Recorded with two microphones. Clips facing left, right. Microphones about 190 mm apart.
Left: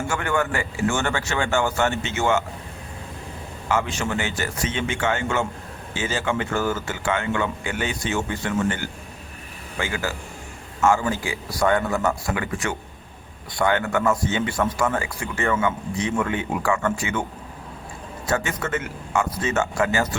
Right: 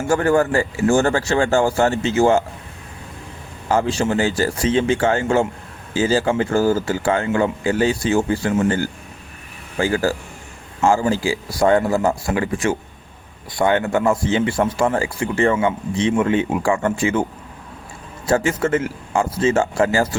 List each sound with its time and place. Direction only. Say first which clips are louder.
0.1 s speech: right 10 dB; 35° right (ahead or behind)
3.7 s speech: right 6 dB; 35° right (ahead or behind)
18.3 s speech: right 7 dB; 30° right (ahead or behind)